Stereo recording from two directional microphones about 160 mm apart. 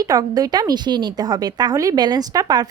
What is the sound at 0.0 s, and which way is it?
A woman's voice, 25° right (ahead or behind).